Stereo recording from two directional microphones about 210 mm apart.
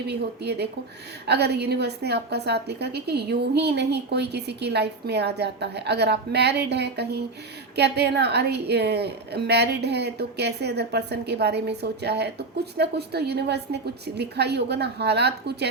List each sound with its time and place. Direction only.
0.0 s a woman's voice: 50° right (ahead or behind)